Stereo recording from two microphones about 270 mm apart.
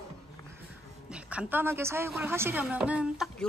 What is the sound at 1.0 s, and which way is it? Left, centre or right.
A woman's voice, centre.